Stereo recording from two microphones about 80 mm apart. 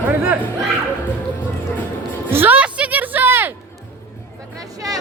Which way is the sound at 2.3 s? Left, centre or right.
Right.